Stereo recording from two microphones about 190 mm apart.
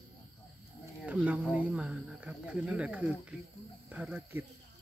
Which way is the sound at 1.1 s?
5° right (ahead or behind).